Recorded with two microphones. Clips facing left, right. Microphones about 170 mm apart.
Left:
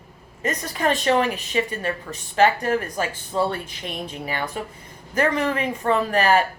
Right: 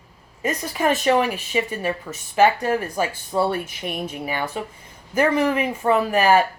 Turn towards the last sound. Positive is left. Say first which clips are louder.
# right 2 dB
turn(degrees=-10)  # may be behind; listen again after turning